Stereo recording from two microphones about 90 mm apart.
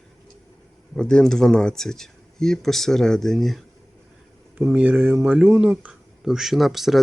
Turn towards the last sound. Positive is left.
turn(degrees=0)  # may be behind; listen again after turning